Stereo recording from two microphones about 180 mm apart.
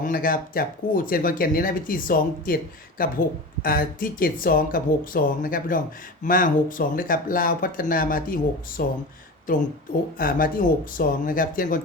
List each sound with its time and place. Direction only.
0.0 s speech: 50° left (ahead or behind)
10.2 s speech: 50° left (ahead or behind)